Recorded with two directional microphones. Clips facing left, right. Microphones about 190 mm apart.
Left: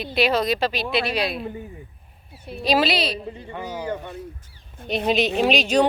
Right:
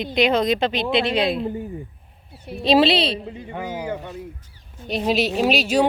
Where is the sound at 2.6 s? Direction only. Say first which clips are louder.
Right 4 dB; 25° right (ahead or behind).